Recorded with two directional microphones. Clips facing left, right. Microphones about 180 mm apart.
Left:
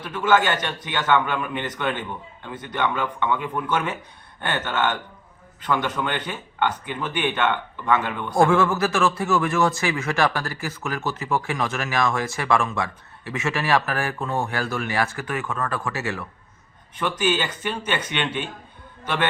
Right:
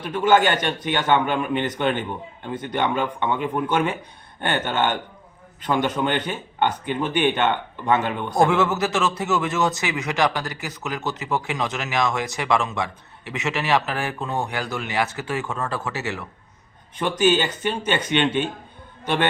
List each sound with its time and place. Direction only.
0.3 s speech: 20° right (ahead or behind)